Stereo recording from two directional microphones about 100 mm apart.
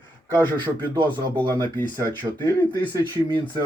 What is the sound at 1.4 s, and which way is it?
Speech, 50° right (ahead or behind).